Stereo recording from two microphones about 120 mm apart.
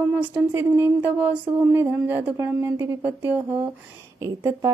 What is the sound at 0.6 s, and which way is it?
Mantra, 20° right (ahead or behind).